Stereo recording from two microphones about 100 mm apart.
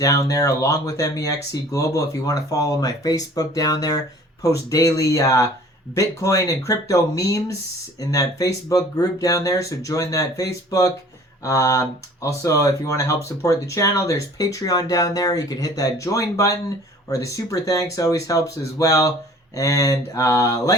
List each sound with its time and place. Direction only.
0.0 s speech: 35° left (ahead or behind)